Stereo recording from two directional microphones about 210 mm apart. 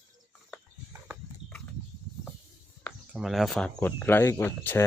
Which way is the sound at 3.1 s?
Centre (ahead or behind).